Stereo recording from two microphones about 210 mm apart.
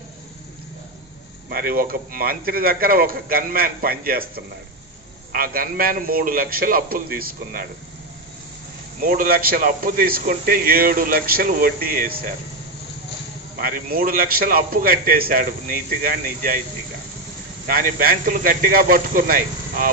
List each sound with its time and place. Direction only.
1.5 s a man's voice: 45° right (ahead or behind)
5.3 s a man's voice: 45° right (ahead or behind)
9.0 s a man's voice: 45° right (ahead or behind)
13.6 s a man's voice: 45° right (ahead or behind)
17.6 s a man's voice: 45° right (ahead or behind)